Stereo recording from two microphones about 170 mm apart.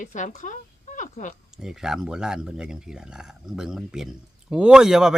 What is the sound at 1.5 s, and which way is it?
Speech, 5° right (ahead or behind).